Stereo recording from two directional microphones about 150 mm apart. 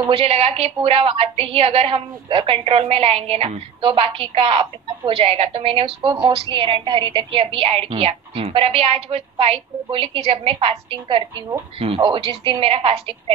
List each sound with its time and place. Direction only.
0.1 s a woman's voice: 40° right (ahead or behind)